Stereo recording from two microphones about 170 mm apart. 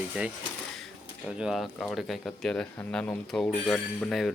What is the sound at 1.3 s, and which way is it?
Speech, 5° right (ahead or behind).